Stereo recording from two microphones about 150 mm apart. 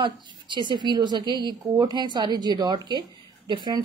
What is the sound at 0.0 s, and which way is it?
A woman's voice, 30° right (ahead or behind).